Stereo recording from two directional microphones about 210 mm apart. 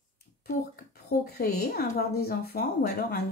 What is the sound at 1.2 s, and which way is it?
Speech, 50° left (ahead or behind).